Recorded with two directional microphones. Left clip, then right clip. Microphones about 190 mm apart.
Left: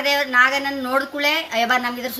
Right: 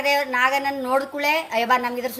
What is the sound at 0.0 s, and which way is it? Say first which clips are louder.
A woman's voice: left 3 dB; 45° right (ahead or behind).